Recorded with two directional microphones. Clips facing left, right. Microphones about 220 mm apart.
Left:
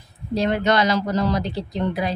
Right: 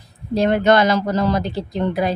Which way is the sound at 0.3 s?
50° right (ahead or behind).